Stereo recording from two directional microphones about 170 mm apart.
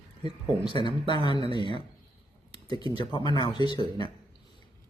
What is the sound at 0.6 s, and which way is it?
Speech, 25° left (ahead or behind).